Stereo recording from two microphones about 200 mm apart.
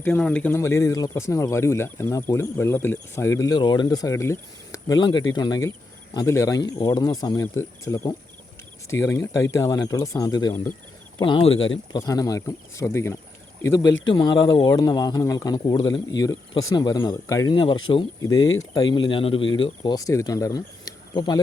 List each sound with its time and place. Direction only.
0.0 s speech: 5° left (ahead or behind); by 11.5 s 25° left (ahead or behind)
11.5 s speech: 75° left (ahead or behind)
11.9 s speech: 20° left (ahead or behind)
13.8 s speech: 70° left (ahead or behind)
14.1 s speech: 20° left (ahead or behind)